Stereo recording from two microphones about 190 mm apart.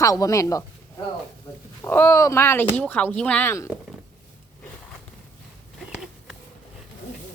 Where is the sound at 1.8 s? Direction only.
10° left (ahead or behind).